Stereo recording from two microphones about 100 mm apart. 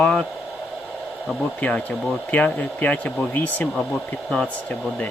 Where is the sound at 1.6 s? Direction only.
15° left (ahead or behind).